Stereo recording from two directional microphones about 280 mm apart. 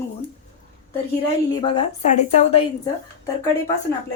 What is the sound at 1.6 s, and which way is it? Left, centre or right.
A woman's voice, left.